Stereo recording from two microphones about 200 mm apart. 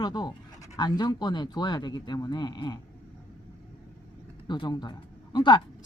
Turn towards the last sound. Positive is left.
turn(degrees=25)  # may be behind; listen again after turning